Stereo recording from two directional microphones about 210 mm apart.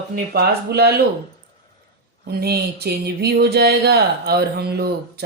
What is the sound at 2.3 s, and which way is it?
Speech, 50° right (ahead or behind).